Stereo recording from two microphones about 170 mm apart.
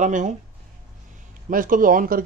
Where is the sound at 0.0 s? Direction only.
45° right (ahead or behind).